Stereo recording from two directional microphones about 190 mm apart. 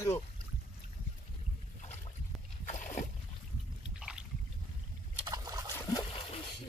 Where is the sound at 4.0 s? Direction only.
5° right (ahead or behind).